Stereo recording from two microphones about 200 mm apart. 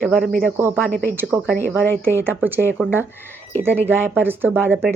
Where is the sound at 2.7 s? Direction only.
10° right (ahead or behind).